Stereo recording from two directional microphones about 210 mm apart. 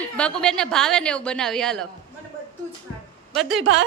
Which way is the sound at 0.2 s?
5° left (ahead or behind).